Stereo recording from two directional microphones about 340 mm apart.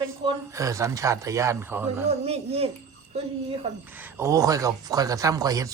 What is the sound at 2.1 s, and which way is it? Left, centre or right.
Speech, centre.